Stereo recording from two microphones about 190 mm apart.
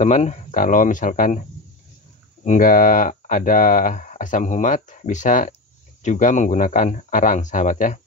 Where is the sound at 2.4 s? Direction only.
45° left (ahead or behind).